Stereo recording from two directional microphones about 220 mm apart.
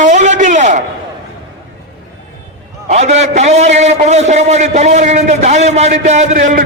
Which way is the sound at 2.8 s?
30° right (ahead or behind).